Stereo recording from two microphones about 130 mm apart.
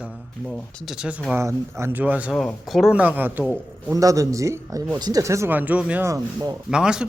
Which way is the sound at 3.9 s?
25° right (ahead or behind).